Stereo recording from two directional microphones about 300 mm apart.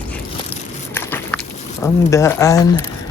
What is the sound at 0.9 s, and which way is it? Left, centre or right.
Biting, centre.